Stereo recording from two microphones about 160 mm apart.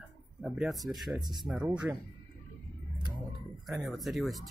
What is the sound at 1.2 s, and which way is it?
Speech, 25° right (ahead or behind).